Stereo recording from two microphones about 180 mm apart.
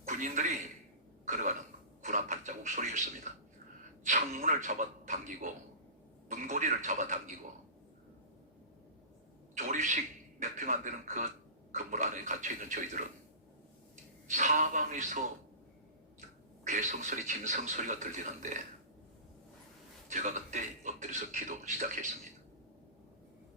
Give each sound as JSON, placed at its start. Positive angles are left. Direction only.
{"t": 0.0, "sound": "a sound", "side_deg": -45}
{"t": 1.3, "sound": "speech", "side_deg": -45}
{"t": 2.0, "sound": "music", "side_deg": -40}
{"t": 3.3, "sound": "speech", "side_deg": -40}
{"t": 9.6, "sound": "speech", "side_deg": -40}
{"t": 14.3, "sound": "speech", "side_deg": -40}
{"t": 16.6, "sound": "speech", "side_deg": -45}
{"t": 20.1, "sound": "speech", "side_deg": -45}